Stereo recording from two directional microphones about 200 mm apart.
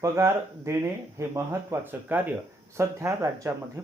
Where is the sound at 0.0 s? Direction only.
15° right (ahead or behind).